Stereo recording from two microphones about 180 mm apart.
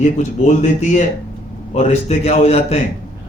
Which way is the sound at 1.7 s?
35° left (ahead or behind).